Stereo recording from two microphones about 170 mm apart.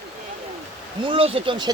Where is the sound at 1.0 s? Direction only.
30° right (ahead or behind).